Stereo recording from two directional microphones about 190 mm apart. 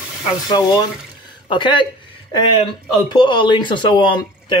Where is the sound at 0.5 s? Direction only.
20° left (ahead or behind).